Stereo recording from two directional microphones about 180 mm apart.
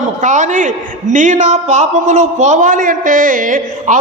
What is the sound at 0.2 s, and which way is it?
A woman's voice, 40° right (ahead or behind).